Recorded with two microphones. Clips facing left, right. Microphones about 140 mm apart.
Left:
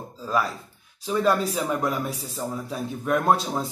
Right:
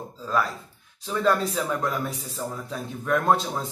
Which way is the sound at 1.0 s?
10° left (ahead or behind).